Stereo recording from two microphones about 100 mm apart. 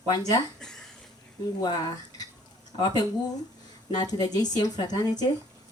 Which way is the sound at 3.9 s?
40° left (ahead or behind).